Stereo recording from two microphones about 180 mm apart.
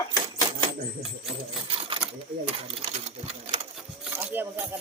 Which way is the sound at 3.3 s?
30° right (ahead or behind).